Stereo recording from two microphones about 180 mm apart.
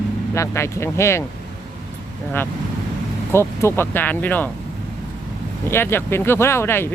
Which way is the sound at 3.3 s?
15° left (ahead or behind).